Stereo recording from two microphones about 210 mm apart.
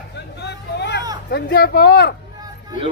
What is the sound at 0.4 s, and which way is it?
Vehicle, 55° left (ahead or behind).